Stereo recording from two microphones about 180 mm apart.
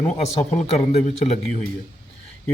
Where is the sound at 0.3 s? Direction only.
40° left (ahead or behind).